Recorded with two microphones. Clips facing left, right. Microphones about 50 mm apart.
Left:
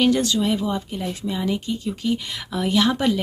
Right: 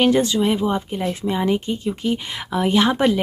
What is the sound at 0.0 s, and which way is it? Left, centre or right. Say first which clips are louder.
Speech: right 2 dB; right.